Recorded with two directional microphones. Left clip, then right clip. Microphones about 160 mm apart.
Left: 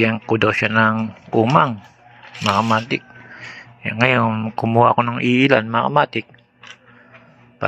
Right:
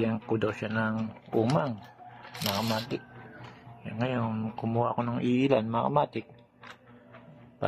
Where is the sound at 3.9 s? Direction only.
20° left (ahead or behind).